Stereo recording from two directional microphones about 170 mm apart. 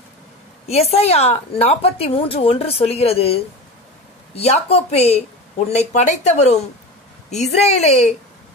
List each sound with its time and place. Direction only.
0.7 s a woman's voice: 40° left (ahead or behind)
4.4 s a woman's voice: 35° left (ahead or behind)